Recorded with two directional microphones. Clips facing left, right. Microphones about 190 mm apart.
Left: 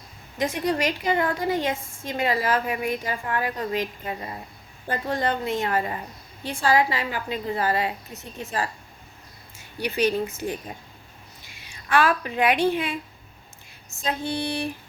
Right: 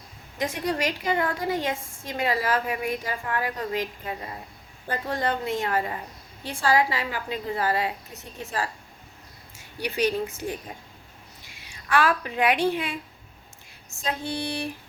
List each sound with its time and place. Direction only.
0.3 s a woman's voice: 20° left (ahead or behind)
9.8 s a woman's voice: 25° left (ahead or behind)
11.9 s a woman's voice: 25° left (ahead or behind)
14.0 s a woman's voice: 20° left (ahead or behind)